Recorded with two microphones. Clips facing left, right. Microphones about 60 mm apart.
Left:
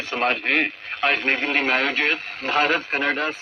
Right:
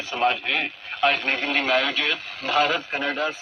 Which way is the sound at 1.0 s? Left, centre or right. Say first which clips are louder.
Even; left.